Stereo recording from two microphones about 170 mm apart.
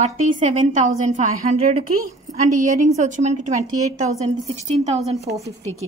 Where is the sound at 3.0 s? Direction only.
45° right (ahead or behind).